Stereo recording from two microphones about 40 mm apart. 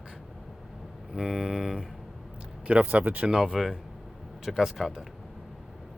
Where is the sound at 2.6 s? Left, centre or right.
Right.